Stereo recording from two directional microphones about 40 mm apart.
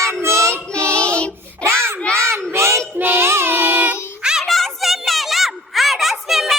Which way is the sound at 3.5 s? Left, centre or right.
Right.